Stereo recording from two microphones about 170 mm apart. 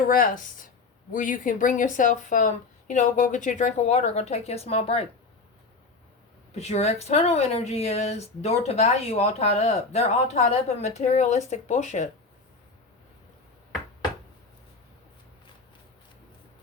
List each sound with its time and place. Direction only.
0.1 s a woman's voice: 55° left (ahead or behind); by 5.0 s 35° left (ahead or behind)
6.5 s speech: 40° left (ahead or behind)